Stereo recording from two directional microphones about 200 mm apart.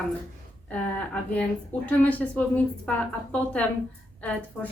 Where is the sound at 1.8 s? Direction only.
5° left (ahead or behind).